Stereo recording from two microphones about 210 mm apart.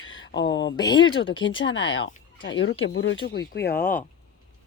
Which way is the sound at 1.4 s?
65° left (ahead or behind).